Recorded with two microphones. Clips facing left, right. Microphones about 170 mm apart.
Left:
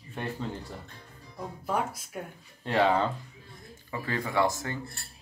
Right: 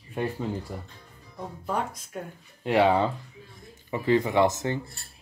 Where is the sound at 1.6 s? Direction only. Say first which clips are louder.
Even; 5° left (ahead or behind).